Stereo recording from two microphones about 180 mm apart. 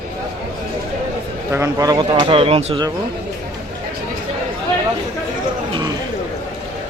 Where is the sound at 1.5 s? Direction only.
20° right (ahead or behind); by 2.8 s 35° right (ahead or behind).